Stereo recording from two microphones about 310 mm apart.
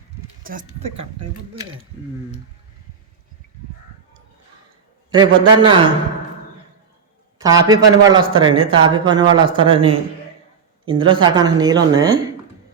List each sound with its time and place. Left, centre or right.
5.1 s a man's voice: centre
7.3 s a man's voice: centre